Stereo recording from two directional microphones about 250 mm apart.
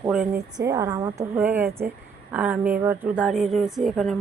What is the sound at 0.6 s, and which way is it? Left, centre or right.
A woman's voice, centre.